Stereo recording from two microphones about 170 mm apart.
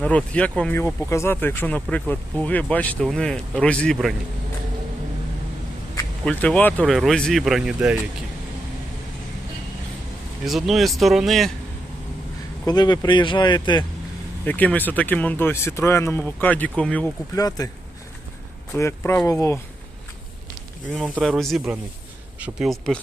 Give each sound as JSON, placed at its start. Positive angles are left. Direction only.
{"t": 0.0, "sound": "speech", "side_deg": 5}
{"t": 6.2, "sound": "speech", "side_deg": 5}
{"t": 10.4, "sound": "speech", "side_deg": 0}
{"t": 12.6, "sound": "speech", "side_deg": 25}
{"t": 14.4, "sound": "speech", "side_deg": 10}
{"t": 17.3, "sound": "speech", "side_deg": 20}
{"t": 18.7, "sound": "speech", "side_deg": 15}
{"t": 20.9, "sound": "speech", "side_deg": 0}